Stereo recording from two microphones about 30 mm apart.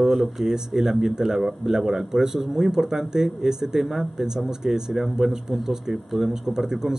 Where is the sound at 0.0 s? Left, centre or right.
Centre.